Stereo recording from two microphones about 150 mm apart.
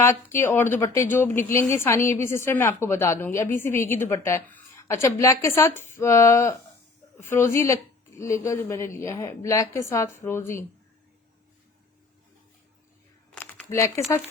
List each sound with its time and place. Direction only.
0.0 s a woman's voice: 15° left (ahead or behind)
13.3 s a sound: 10° left (ahead or behind)
13.7 s speech: 20° left (ahead or behind)